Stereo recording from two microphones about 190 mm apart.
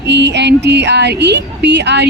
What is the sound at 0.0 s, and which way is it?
Speech, 65° right (ahead or behind).